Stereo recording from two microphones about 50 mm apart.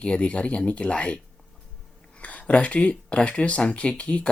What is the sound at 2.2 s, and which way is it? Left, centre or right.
Speech, left.